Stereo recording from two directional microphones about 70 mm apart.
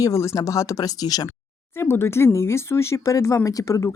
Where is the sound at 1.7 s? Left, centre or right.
Left.